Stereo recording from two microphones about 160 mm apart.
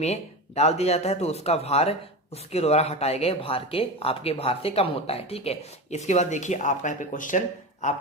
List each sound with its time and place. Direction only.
0.0 s speech: 40° left (ahead or behind)